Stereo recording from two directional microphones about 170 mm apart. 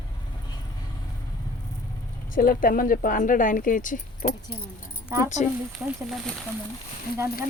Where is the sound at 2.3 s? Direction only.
55° left (ahead or behind).